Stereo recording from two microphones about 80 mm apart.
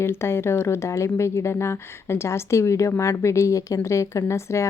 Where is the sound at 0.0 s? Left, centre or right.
Left.